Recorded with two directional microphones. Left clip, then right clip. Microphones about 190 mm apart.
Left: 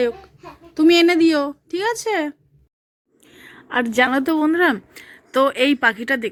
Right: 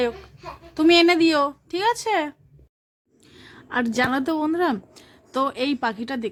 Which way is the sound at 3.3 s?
Centre (ahead or behind).